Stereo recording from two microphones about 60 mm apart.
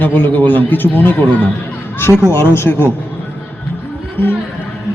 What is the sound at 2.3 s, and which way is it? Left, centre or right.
Speech, left.